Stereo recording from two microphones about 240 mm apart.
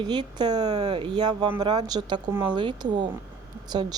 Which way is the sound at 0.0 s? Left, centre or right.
Centre.